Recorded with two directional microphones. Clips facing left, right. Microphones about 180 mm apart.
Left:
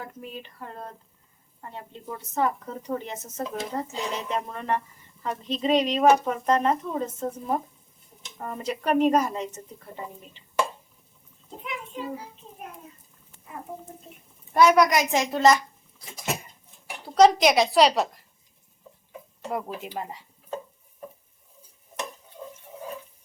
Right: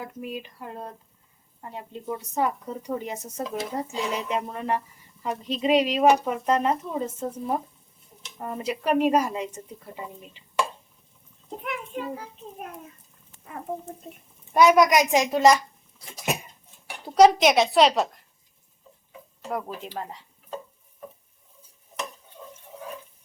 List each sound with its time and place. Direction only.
0.2 s a woman's voice: 10° right (ahead or behind)
11.6 s a sound: 55° right (ahead or behind)
14.5 s speech: 15° right (ahead or behind)
17.2 s a woman's voice: 5° right (ahead or behind)
19.5 s speech: 5° left (ahead or behind)